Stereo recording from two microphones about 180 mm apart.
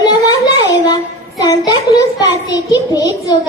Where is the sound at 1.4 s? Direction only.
20° left (ahead or behind).